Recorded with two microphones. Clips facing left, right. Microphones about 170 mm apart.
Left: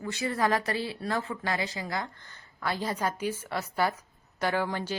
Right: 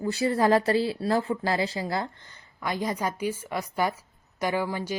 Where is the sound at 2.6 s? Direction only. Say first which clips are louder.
Right 2 dB; 15° right (ahead or behind).